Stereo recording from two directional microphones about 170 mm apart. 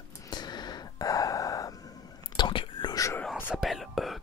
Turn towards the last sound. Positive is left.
turn(degrees=0)  # may be behind; listen again after turning